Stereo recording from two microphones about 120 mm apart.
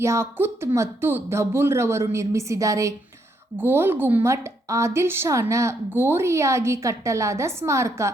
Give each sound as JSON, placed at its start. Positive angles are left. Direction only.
{"t": 0.0, "sound": "a woman's voice", "side_deg": -20}